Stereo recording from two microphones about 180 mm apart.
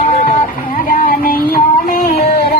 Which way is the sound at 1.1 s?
55° left (ahead or behind).